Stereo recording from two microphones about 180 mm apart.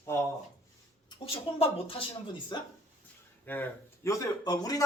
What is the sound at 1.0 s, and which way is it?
Speech, 30° left (ahead or behind).